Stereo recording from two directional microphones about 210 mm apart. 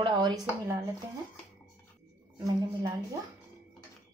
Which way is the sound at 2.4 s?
15° right (ahead or behind).